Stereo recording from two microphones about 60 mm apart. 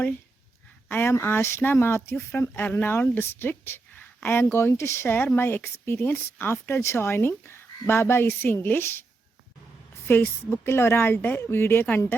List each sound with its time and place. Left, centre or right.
0.9 s speech: left
2.5 s a woman's voice: left
10.1 s a woman's voice: left